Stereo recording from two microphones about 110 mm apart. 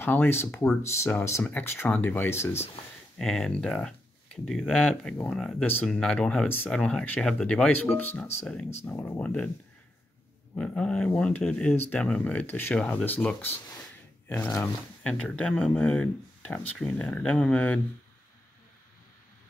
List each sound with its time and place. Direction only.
0.0 s speech: 20° left (ahead or behind)
3.2 s speech: 5° left (ahead or behind)
5.5 s speech: 15° left (ahead or behind)
10.5 s speech: 10° left (ahead or behind)
15.1 s speech: 10° left (ahead or behind)